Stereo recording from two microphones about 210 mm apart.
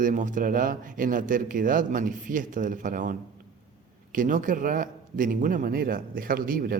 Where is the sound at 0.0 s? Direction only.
40° right (ahead or behind).